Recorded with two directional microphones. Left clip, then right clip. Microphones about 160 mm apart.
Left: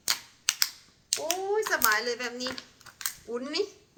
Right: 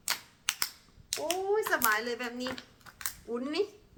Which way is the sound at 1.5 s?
20° right (ahead or behind).